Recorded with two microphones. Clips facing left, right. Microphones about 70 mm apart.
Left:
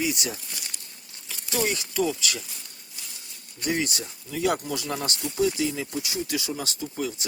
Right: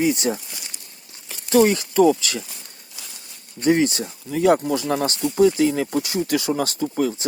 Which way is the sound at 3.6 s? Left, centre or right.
Right.